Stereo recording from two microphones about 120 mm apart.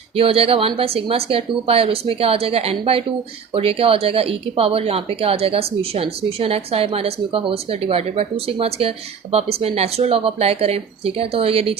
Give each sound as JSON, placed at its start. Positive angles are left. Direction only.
{"t": 0.2, "sound": "speech", "side_deg": -55}